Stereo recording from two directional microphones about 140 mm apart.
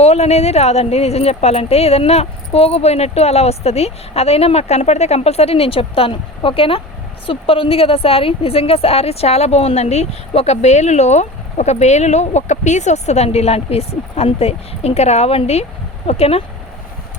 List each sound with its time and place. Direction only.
0.0 s a woman's voice: 50° left (ahead or behind)